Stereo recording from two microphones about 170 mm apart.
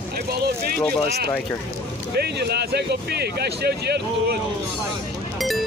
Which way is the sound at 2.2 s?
75° right (ahead or behind).